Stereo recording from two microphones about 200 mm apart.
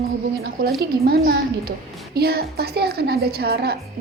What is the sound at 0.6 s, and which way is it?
A woman's voice, 50° right (ahead or behind).